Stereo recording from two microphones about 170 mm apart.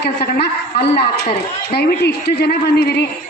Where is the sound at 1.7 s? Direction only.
75° left (ahead or behind).